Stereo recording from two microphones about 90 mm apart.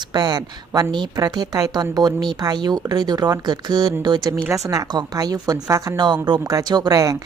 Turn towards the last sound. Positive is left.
turn(degrees=-40)  # may be behind; listen again after turning